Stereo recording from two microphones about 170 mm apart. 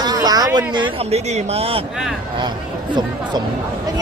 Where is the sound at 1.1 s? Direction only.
40° right (ahead or behind).